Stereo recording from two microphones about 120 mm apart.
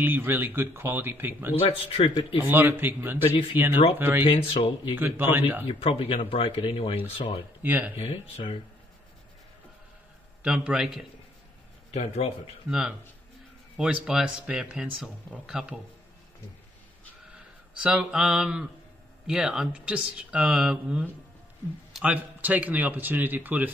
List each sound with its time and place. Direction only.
0.0 s speech: 15° right (ahead or behind)
1.7 s speech: 50° left (ahead or behind)
2.4 s speech: 20° right (ahead or behind)
4.3 s speech: 50° left (ahead or behind)
4.9 s speech: 15° right (ahead or behind)
5.7 s speech: 50° left (ahead or behind)
7.6 s speech: 10° right (ahead or behind)
8.0 s speech: 45° left (ahead or behind)
10.4 s speech: 5° right (ahead or behind)
11.9 s speech: 60° left (ahead or behind)
12.6 s speech: 5° right (ahead or behind)
17.7 s speech: 5° right (ahead or behind)